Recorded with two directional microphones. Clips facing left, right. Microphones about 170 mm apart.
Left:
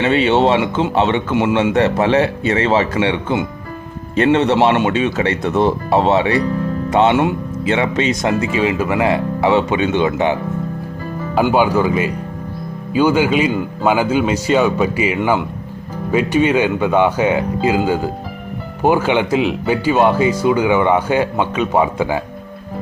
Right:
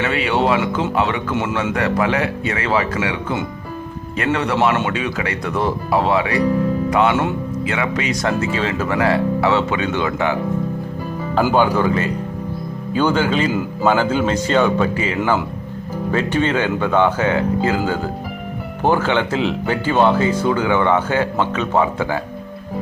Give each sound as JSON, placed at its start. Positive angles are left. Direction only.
{"t": 0.0, "sound": "speech", "side_deg": 25}
{"t": 1.7, "sound": "speech", "side_deg": 25}
{"t": 11.5, "sound": "speech", "side_deg": 10}